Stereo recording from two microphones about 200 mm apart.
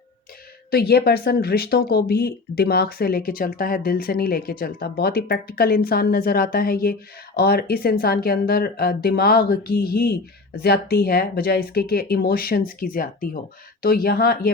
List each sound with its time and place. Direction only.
0.7 s speech: 50° left (ahead or behind)